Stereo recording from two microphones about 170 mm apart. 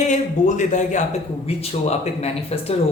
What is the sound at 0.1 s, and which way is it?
A man's voice, 45° left (ahead or behind).